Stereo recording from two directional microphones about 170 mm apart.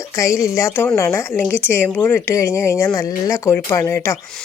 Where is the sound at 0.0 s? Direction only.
20° left (ahead or behind).